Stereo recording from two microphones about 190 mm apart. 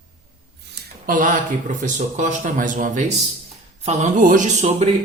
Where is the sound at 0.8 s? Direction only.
45° right (ahead or behind).